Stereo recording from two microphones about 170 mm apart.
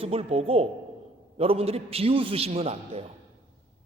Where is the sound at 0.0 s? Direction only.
35° right (ahead or behind).